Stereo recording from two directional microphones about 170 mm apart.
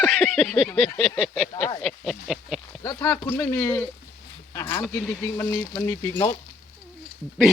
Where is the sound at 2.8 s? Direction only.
10° left (ahead or behind).